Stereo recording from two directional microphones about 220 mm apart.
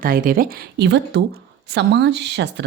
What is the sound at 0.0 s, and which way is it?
Speech, 40° right (ahead or behind).